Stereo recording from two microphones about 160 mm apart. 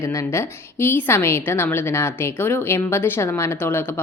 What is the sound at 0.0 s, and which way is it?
A woman's voice, 20° left (ahead or behind).